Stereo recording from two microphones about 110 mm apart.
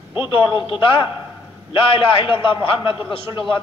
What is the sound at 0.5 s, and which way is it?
Speech, 50° left (ahead or behind).